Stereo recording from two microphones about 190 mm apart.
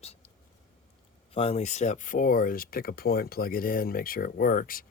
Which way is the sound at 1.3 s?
30° left (ahead or behind).